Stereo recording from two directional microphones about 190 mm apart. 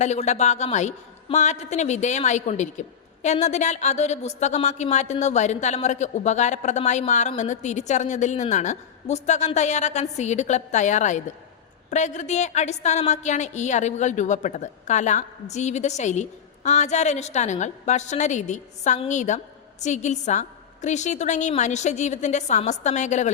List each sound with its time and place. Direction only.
0.0 s speech: 35° left (ahead or behind)